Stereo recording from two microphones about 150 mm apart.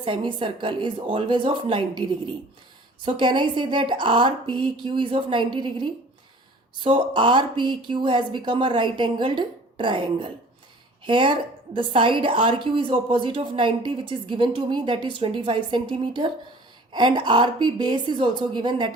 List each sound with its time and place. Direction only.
0.0 s a woman's voice: 35° right (ahead or behind)